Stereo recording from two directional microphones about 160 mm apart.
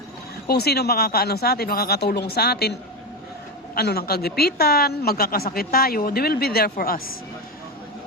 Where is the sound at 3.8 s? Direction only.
75° left (ahead or behind).